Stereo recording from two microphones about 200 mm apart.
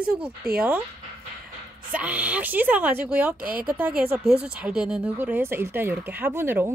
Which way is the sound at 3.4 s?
45° right (ahead or behind).